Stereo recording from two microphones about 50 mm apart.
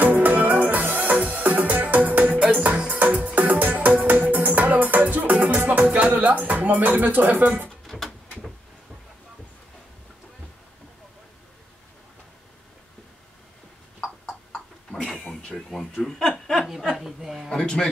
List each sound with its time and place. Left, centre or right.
0.0 s music: right
7.8 s pigeon: centre
15.1 s a sound: centre
16.1 s chuckle: centre
17.6 s a man's voice: centre